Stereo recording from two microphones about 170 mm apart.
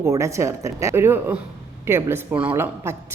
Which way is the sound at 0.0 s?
15° right (ahead or behind).